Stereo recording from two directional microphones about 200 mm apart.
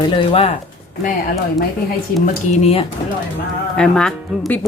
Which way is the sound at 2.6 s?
30° left (ahead or behind).